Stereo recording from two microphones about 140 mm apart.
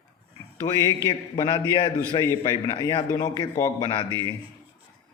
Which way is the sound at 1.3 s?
35° left (ahead or behind).